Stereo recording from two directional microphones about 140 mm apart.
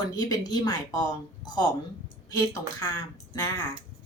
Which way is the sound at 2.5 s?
25° left (ahead or behind).